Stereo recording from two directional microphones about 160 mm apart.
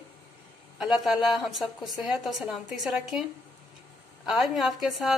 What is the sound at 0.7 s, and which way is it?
A woman's voice, 5° right (ahead or behind).